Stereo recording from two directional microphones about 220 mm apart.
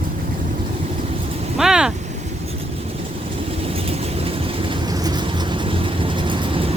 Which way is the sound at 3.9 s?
25° right (ahead or behind).